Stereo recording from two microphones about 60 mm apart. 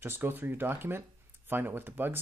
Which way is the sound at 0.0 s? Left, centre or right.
Right.